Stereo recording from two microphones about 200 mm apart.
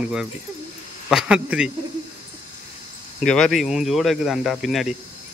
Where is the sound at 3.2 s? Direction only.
Centre (ahead or behind).